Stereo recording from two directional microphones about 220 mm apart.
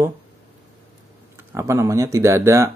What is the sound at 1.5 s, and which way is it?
Speech, 10° right (ahead or behind).